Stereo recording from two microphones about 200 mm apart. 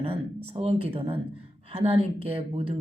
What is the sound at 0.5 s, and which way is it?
Speech, 30° right (ahead or behind).